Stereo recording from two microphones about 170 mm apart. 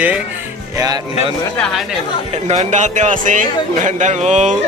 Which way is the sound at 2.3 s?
40° right (ahead or behind).